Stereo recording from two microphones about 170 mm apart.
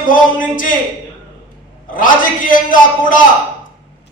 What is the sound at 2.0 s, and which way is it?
A man's voice, 55° left (ahead or behind).